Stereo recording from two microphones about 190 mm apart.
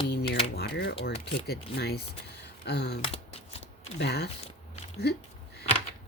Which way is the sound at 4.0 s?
60° left (ahead or behind).